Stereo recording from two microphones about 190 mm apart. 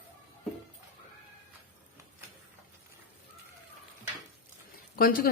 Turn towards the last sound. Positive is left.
turn(degrees=50)  # may be behind; listen again after turning